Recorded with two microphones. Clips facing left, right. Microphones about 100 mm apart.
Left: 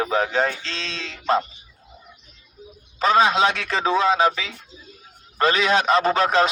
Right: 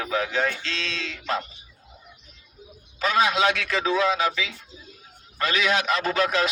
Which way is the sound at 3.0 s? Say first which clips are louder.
Left 4 dB; 30° left (ahead or behind).